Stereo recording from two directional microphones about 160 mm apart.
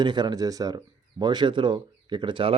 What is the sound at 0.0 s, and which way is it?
Speech, 25° right (ahead or behind).